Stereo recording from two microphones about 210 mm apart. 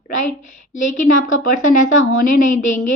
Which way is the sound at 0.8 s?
35° left (ahead or behind).